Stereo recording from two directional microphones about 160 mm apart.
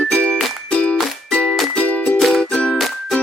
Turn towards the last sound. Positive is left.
turn(degrees=5)  # may be behind; listen again after turning